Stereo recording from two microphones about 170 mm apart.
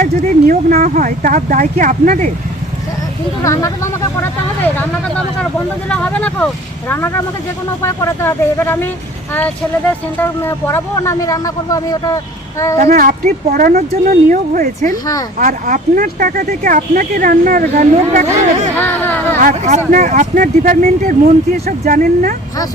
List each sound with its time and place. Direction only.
0.0 s speech: 45° right (ahead or behind)
3.4 s speech: 15° left (ahead or behind)
4.8 s speech: 5° left (ahead or behind)
10.2 s speech: 15° left (ahead or behind)
12.8 s speech: 55° right (ahead or behind)
18.8 s a sound: 10° left (ahead or behind)
19.4 s speech: 50° right (ahead or behind)